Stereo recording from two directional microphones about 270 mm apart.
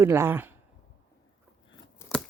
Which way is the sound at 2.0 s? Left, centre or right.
Centre.